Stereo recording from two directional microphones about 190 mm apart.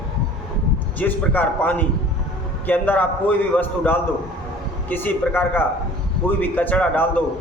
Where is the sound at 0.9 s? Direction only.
10° left (ahead or behind).